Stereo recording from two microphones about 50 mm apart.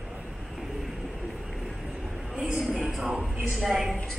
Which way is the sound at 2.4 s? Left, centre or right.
Right.